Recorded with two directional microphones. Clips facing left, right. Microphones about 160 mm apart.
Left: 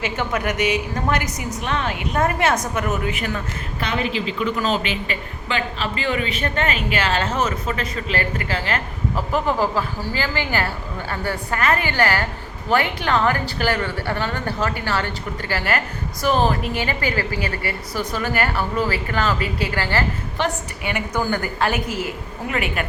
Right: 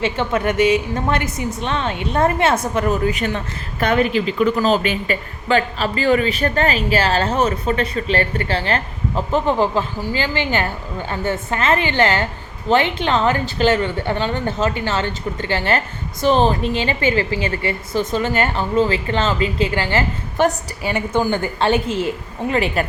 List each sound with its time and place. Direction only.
0.0 s a woman's voice: 30° right (ahead or behind)
3.8 s a woman's voice: 50° right (ahead or behind); by 20.1 s 20° right (ahead or behind)
20.4 s a woman's voice: 45° right (ahead or behind)
20.8 s a woman's voice: 30° right (ahead or behind)